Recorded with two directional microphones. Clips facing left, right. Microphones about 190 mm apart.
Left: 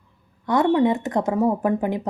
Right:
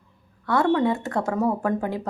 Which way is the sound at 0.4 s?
20° left (ahead or behind).